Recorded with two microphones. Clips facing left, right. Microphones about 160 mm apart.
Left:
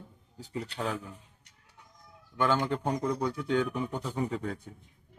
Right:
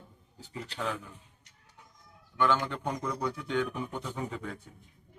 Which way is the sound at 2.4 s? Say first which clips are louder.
Left 1 dB; 40° left (ahead or behind).